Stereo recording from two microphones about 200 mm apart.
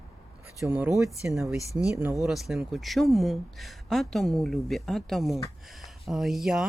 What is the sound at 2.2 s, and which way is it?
Speech, centre (ahead or behind).